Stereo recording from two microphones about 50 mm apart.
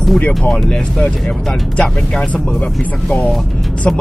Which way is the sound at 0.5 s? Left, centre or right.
Centre.